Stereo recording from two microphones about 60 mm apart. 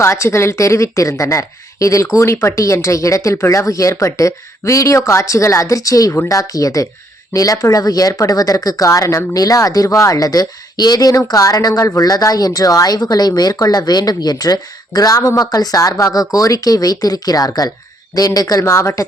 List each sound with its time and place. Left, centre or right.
0.0 s speech: left
11.9 s speech: left
18.6 s speech: left